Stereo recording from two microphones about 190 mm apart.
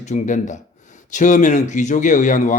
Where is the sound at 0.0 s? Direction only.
40° left (ahead or behind).